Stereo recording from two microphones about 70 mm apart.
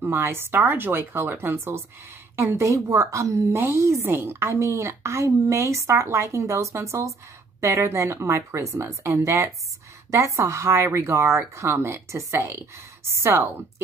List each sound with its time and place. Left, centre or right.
0.0 s a woman's voice: right
2.6 s a woman's voice: right